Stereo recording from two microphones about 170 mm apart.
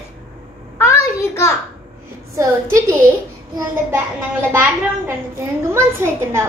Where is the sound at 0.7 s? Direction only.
15° left (ahead or behind).